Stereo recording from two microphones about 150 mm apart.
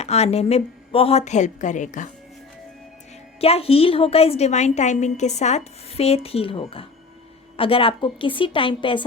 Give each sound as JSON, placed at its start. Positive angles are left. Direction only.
{"t": 0.0, "sound": "a woman's voice", "side_deg": 45}
{"t": 3.4, "sound": "a woman's voice", "side_deg": 40}